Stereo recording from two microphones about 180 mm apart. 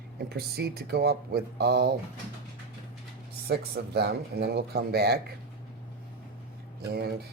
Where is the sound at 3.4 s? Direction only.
65° right (ahead or behind).